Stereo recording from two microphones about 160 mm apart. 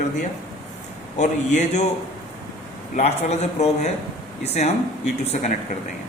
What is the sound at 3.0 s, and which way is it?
A man's voice, 45° left (ahead or behind).